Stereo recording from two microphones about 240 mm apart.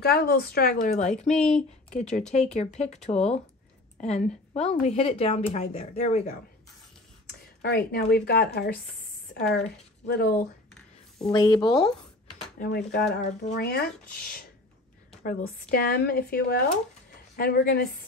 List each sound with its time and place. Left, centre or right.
0.0 s speech: left
1.3 s speech: centre
2.0 s speech: left
7.2 s speech: left
11.3 s speech: centre
12.5 s speech: left